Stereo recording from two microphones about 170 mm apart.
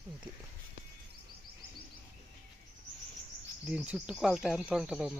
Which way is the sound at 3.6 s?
5° right (ahead or behind).